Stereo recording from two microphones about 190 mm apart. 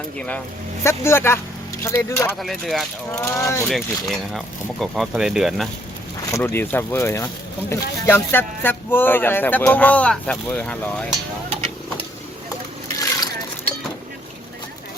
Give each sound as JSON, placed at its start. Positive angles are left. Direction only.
{"t": 0.2, "sound": "speech", "side_deg": 5}
{"t": 2.1, "sound": "speech", "side_deg": 0}
{"t": 3.1, "sound": "speech", "side_deg": 10}
{"t": 3.7, "sound": "speech", "side_deg": 0}
{"t": 6.3, "sound": "speech", "side_deg": 10}